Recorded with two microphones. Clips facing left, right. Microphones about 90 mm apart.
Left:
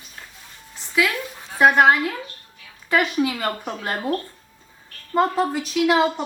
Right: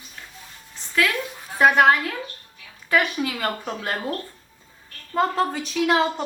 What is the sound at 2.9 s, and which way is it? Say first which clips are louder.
Speech: left 2 dB; 20° left (ahead or behind).